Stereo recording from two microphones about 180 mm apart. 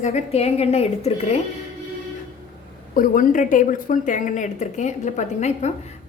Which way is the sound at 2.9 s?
50° left (ahead or behind).